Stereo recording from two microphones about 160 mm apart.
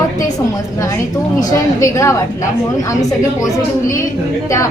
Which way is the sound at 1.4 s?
20° left (ahead or behind).